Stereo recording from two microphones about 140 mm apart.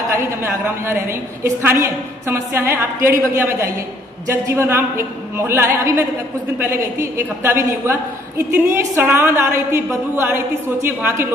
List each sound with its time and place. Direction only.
0.1 s a woman's voice: 20° right (ahead or behind)